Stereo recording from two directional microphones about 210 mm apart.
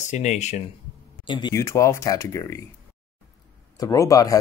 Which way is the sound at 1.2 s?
20° left (ahead or behind).